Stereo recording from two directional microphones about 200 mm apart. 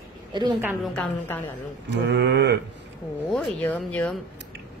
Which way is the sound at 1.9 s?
60° right (ahead or behind).